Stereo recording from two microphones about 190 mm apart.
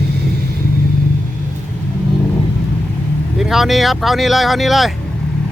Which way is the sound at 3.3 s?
Centre (ahead or behind).